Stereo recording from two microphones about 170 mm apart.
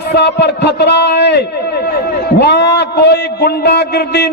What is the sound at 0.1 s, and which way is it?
A man's voice, 85° left.